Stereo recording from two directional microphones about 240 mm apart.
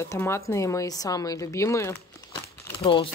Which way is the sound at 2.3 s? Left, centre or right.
Left.